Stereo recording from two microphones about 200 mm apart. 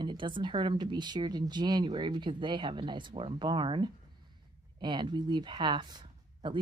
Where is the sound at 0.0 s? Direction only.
25° right (ahead or behind).